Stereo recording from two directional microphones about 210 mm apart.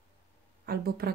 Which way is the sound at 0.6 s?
45° right (ahead or behind).